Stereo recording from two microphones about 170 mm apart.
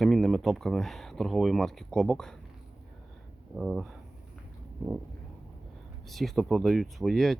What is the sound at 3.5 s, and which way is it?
Speech, centre (ahead or behind).